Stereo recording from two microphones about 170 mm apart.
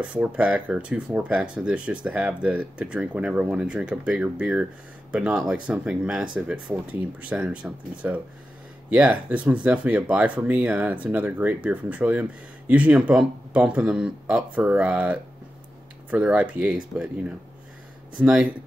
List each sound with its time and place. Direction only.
0.0 s speech: 10° right (ahead or behind)